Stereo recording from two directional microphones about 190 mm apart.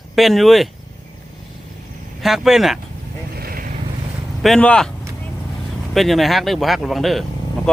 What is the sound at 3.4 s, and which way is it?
Vehicle, 50° right (ahead or behind).